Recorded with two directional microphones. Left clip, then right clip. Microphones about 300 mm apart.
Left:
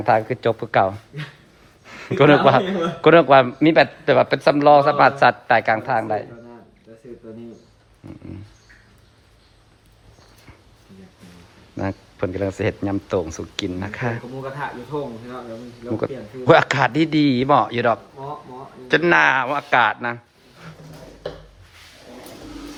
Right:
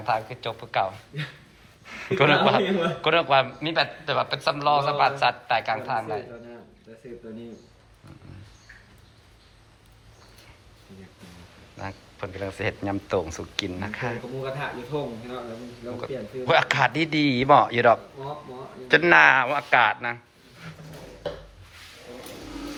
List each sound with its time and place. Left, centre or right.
0.0 s a man's voice: left
11.8 s speech: centre
16.5 s speech: centre